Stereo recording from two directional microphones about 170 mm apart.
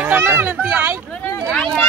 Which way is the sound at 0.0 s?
10° right (ahead or behind).